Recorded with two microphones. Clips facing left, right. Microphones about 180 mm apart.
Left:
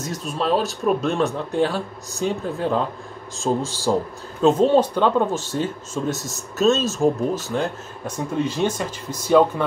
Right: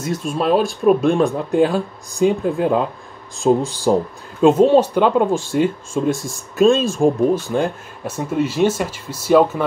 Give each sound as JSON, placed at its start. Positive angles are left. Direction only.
{"t": 0.0, "sound": "speech", "side_deg": -10}